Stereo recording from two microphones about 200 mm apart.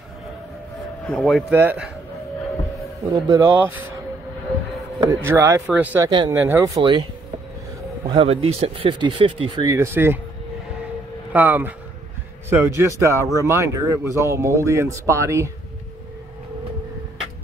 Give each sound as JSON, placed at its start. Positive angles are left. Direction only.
{"t": 1.0, "sound": "speech", "side_deg": 0}
{"t": 3.1, "sound": "speech", "side_deg": -15}
{"t": 4.9, "sound": "speech", "side_deg": -20}
{"t": 6.0, "sound": "speech", "side_deg": -20}
{"t": 8.1, "sound": "speech", "side_deg": -25}
{"t": 9.7, "sound": "speech", "side_deg": -10}
{"t": 11.3, "sound": "speech", "side_deg": -10}